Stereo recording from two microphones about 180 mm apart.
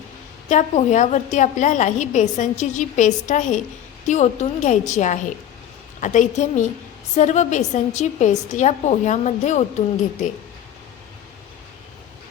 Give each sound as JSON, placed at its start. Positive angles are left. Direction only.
{"t": 0.4, "sound": "a woman's voice", "side_deg": 40}